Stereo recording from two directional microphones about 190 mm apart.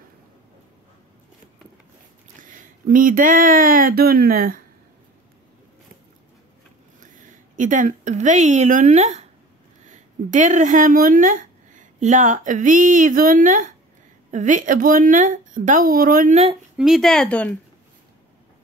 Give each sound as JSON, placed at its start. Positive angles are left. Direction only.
{"t": 2.4, "sound": "speech", "side_deg": -45}
{"t": 7.0, "sound": "speech", "side_deg": -45}
{"t": 16.7, "sound": "speech", "side_deg": 0}